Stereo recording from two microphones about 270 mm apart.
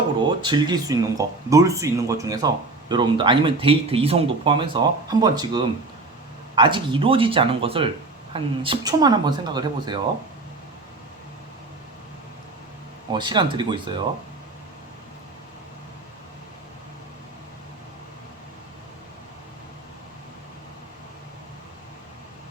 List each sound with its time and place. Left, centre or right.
0.3 s speech: centre
13.1 s speech: centre